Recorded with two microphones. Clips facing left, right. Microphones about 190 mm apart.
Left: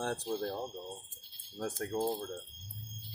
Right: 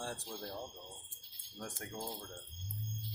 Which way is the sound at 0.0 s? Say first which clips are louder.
Left 9 dB; 60° left (ahead or behind).